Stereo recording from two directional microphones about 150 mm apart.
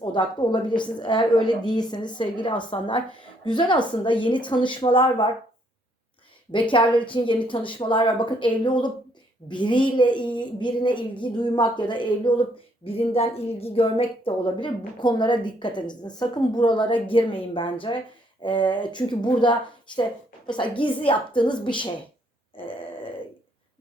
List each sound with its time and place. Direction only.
0.0 s speech: 30° left (ahead or behind)
6.5 s speech: 35° left (ahead or behind)
22.5 s grunt: 35° left (ahead or behind)